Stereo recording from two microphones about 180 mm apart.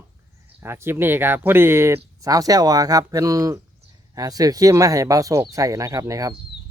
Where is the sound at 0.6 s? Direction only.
15° right (ahead or behind).